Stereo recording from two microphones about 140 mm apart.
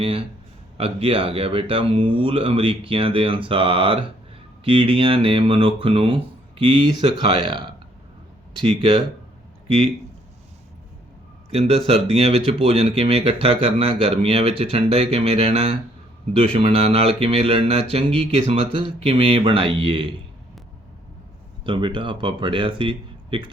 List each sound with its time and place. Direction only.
0.0 s speech: 40° right (ahead or behind)
11.5 s speech: 45° right (ahead or behind)
21.6 s speech: 35° right (ahead or behind)